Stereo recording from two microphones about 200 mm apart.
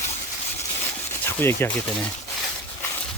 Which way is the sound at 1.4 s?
10° left (ahead or behind).